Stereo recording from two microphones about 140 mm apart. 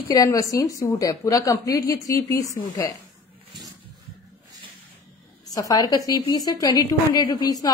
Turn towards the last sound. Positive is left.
turn(degrees=25)  # may be behind; listen again after turning